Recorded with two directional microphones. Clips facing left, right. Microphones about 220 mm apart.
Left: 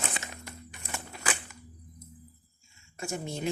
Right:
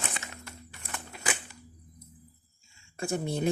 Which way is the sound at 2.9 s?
35° right (ahead or behind).